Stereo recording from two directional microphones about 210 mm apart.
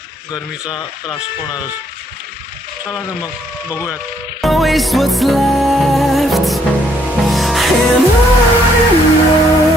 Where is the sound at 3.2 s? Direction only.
15° left (ahead or behind).